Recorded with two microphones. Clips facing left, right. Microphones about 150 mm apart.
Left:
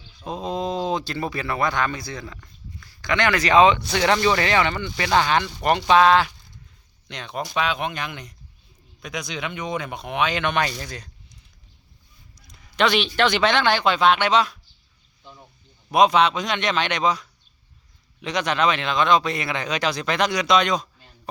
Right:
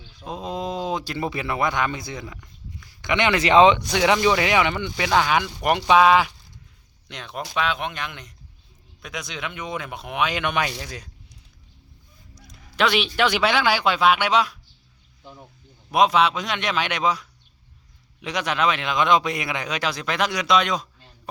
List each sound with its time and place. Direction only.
0.2 s speech: 5° right (ahead or behind)
12.5 s speech: 5° right (ahead or behind)
15.2 s a sound: 10° right (ahead or behind)
15.9 s speech: 5° right (ahead or behind)